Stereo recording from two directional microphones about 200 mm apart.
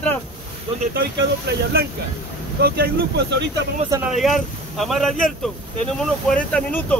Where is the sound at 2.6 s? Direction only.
50° right (ahead or behind).